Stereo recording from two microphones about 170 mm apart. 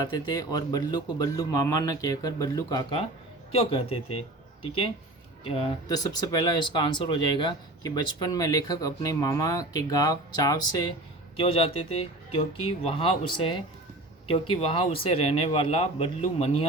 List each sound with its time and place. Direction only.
0.0 s speech: 25° left (ahead or behind)
3.5 s speech: 35° left (ahead or behind)
5.4 s speech: 35° left (ahead or behind)
5.9 s speech: 20° left (ahead or behind)
11.3 s speech: 35° left (ahead or behind)